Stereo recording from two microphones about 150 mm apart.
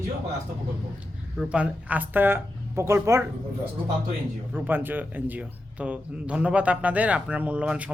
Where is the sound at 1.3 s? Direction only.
5° right (ahead or behind).